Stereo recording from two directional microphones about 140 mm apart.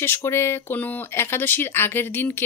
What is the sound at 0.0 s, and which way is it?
Speech, 20° left (ahead or behind).